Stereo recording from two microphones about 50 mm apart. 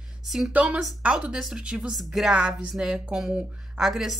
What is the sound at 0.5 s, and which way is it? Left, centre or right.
Speech, right.